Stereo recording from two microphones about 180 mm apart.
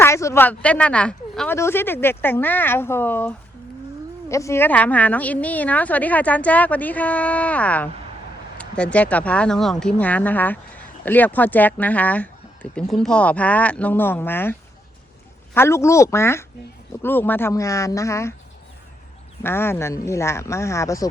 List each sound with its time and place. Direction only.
0.0 s speech: 15° left (ahead or behind)
15.5 s speech: 15° left (ahead or behind)
19.4 s speech: 10° left (ahead or behind)